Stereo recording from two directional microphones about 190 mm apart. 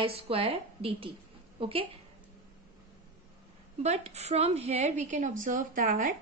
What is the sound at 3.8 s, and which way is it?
A woman's voice, 35° right (ahead or behind).